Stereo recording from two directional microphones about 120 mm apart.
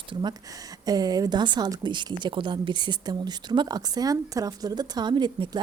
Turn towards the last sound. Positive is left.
turn(degrees=-40)  # may be behind; listen again after turning